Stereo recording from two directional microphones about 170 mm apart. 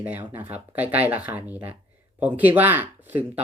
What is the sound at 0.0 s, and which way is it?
Speech, 10° right (ahead or behind).